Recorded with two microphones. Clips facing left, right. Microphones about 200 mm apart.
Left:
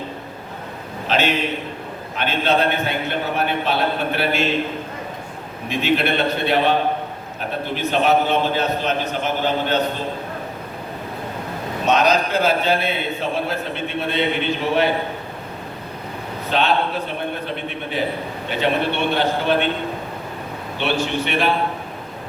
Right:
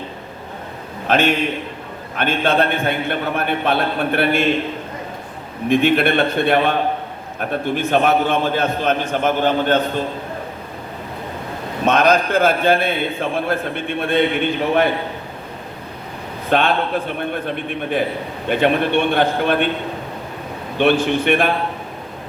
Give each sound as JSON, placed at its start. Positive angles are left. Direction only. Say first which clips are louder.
{"t": 1.0, "sound": "a man's voice", "louder": "right 3 dB", "side_deg": -50}
{"t": 5.6, "sound": "a man's voice", "louder": "right 5 dB", "side_deg": -50}
{"t": 11.9, "sound": "a man's voice", "louder": "right 2 dB", "side_deg": -50}
{"t": 16.5, "sound": "a man's voice", "louder": "right 3 dB", "side_deg": -50}
{"t": 18.4, "sound": "a man's voice", "louder": "right 4 dB", "side_deg": -55}
{"t": 20.7, "sound": "a man's voice", "louder": "right 6 dB", "side_deg": -50}